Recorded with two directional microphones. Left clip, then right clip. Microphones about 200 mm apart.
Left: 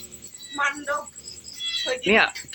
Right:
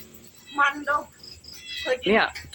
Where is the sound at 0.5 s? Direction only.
45° right (ahead or behind).